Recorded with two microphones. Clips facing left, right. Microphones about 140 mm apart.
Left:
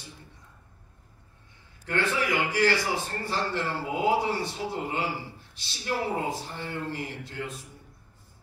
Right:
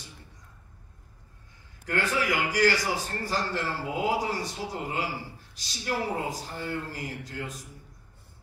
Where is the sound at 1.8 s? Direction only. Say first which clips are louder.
Even; 40° right (ahead or behind).